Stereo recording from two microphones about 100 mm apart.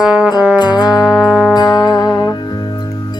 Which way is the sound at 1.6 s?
45° left (ahead or behind).